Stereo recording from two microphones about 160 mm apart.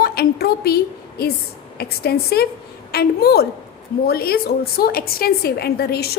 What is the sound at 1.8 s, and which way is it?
A woman's voice, 80° left.